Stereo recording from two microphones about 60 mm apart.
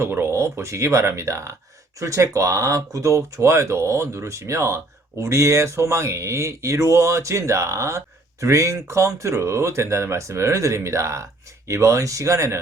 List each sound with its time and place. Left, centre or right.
0.0 s speech: right